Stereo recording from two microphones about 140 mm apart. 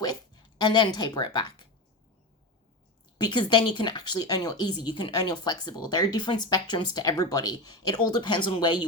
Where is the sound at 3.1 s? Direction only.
35° left (ahead or behind).